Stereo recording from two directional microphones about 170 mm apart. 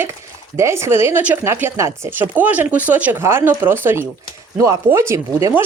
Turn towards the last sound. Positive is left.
turn(degrees=-15)  # may be behind; listen again after turning